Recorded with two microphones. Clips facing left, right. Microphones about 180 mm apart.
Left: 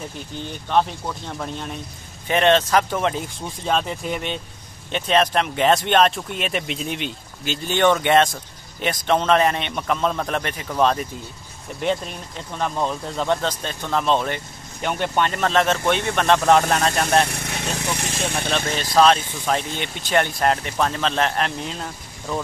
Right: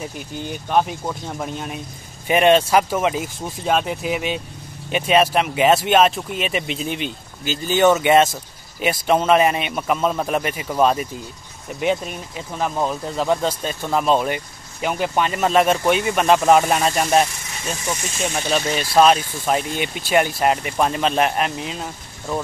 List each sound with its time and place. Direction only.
0.4 s speech: 10° right (ahead or behind)
17.3 s speech: 65° left (ahead or behind)
18.7 s speech: 10° right (ahead or behind)